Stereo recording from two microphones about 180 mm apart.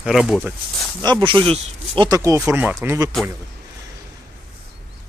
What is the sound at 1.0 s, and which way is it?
Speech, 25° right (ahead or behind).